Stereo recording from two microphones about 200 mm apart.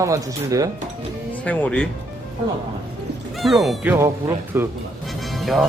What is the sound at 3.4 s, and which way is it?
Speech, centre (ahead or behind).